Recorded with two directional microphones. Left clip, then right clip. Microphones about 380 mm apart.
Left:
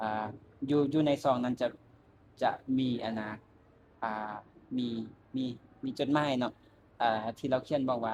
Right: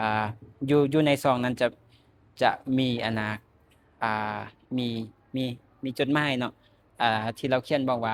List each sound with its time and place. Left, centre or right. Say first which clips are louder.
0.0 s speech: right 7 dB; right